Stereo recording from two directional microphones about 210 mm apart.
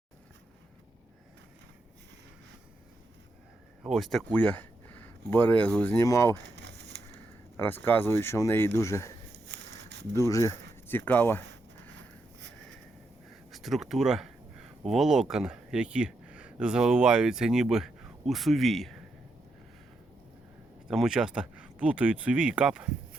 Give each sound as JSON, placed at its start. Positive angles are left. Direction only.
{"t": 3.8, "sound": "speech", "side_deg": 0}
{"t": 6.6, "sound": "a sound", "side_deg": -55}
{"t": 7.5, "sound": "speech", "side_deg": 10}
{"t": 9.5, "sound": "a sound", "side_deg": -55}
{"t": 10.2, "sound": "speech", "side_deg": 15}
{"t": 13.5, "sound": "speech", "side_deg": 0}
{"t": 20.8, "sound": "speech", "side_deg": 0}